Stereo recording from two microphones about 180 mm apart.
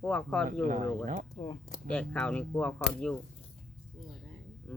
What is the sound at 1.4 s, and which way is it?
Speech, 30° left (ahead or behind).